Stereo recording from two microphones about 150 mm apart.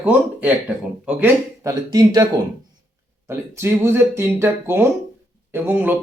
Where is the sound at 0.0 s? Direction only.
10° right (ahead or behind).